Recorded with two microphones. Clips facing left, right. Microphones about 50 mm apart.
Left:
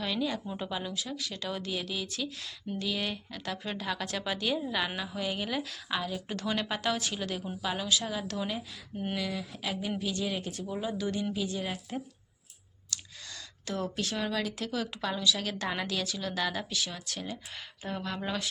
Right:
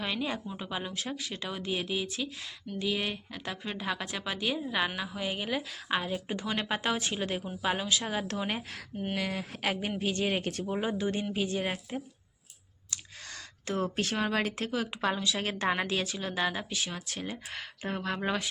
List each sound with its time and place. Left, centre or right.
0.0 s a woman's voice: right
0.4 s speech: centre
0.7 s a woman's voice: right
1.5 s a woman's voice: centre
1.7 s a woman's voice: right
5.9 s a woman's voice: right
12.9 s a sound: right
14.7 s a woman's voice: right